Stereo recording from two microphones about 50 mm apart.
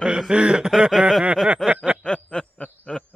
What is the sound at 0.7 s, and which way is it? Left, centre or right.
Speech, centre.